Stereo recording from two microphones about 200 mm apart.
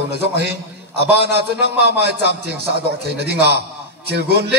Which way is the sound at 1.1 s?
55° right (ahead or behind).